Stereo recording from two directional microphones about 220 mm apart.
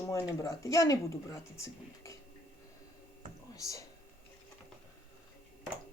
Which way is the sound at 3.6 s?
15° left (ahead or behind).